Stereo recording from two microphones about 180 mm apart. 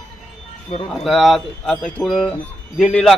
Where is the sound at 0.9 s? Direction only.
Centre (ahead or behind).